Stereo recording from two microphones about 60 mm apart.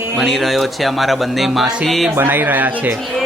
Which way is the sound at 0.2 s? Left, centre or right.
Centre.